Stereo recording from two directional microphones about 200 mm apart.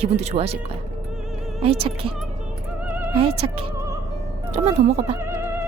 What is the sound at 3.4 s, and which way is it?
A woman's voice, 30° right (ahead or behind).